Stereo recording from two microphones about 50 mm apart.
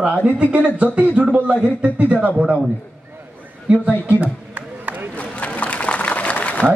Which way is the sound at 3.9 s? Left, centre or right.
Left.